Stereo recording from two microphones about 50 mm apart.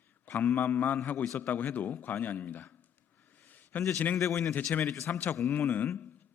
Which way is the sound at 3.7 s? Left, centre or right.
Left.